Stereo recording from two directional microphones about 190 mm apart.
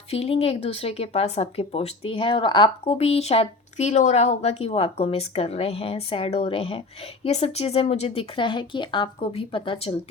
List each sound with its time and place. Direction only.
0.1 s a woman's voice: 30° left (ahead or behind)